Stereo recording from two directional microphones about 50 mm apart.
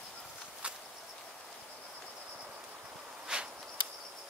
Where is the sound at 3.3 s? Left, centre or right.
Centre.